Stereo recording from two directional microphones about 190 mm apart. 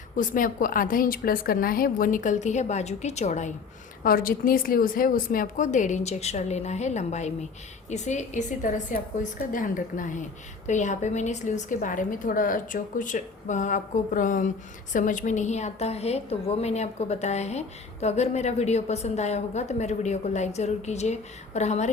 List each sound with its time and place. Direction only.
0.2 s a woman's voice: 45° left (ahead or behind)
4.0 s a woman's voice: 50° left (ahead or behind)